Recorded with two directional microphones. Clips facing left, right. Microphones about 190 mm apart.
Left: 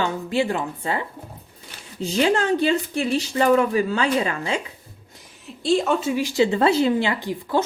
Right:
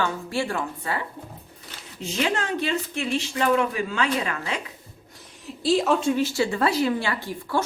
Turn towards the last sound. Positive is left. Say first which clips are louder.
# left 4 dB
turn(degrees=20)  # may be behind; listen again after turning